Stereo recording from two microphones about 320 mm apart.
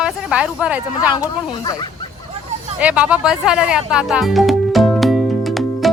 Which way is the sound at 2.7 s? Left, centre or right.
Centre.